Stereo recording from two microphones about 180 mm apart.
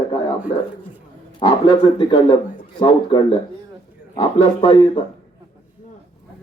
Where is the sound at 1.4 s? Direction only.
25° left (ahead or behind).